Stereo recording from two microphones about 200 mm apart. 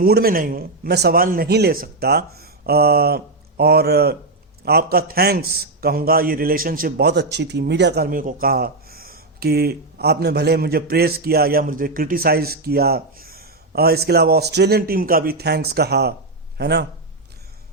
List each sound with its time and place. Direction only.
0.0 s a man's voice: 50° right (ahead or behind)